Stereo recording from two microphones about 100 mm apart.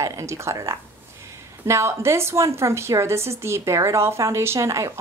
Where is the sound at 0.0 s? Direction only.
30° right (ahead or behind).